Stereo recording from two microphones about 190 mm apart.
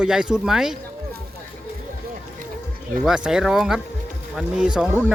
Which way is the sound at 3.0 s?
5° right (ahead or behind).